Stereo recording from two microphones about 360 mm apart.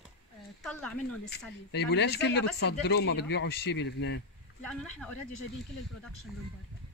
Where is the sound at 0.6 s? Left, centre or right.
Centre.